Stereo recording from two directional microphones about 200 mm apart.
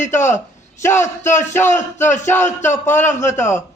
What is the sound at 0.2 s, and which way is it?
A man's voice, 15° left (ahead or behind).